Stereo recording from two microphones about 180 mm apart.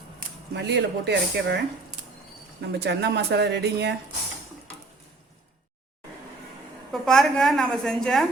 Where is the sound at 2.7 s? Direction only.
70° right (ahead or behind).